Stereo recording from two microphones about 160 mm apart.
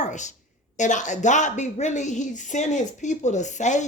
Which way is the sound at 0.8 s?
50° left (ahead or behind).